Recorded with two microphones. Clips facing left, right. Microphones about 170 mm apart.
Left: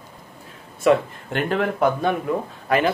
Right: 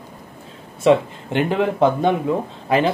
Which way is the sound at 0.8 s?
20° right (ahead or behind).